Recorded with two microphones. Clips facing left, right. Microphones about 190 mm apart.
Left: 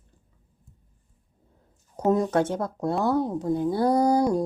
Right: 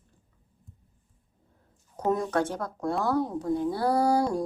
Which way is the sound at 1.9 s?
20° left (ahead or behind).